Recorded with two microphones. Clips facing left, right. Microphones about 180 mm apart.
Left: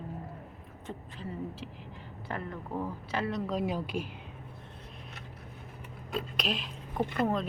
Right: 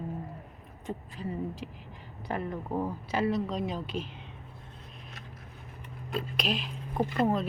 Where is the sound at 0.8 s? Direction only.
15° right (ahead or behind).